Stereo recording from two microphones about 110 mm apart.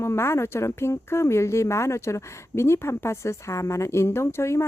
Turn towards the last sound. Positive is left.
turn(degrees=25)  # may be behind; listen again after turning